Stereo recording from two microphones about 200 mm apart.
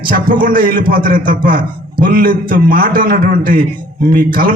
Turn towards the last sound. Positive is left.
turn(degrees=-45)  # may be behind; listen again after turning